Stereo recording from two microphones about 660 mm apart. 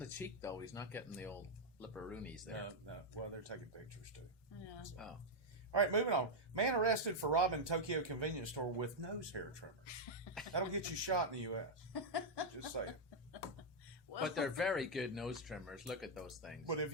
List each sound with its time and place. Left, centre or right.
0.0 s speech: centre
3.5 s speech: right
5.0 s speech: centre
5.7 s speech: right
11.9 s laughter: left
12.8 s speech: right
14.2 s speech: centre
16.6 s speech: right